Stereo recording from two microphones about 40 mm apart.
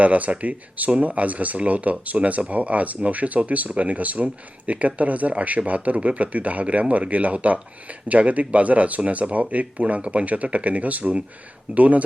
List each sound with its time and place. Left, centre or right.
0.0 s speech: right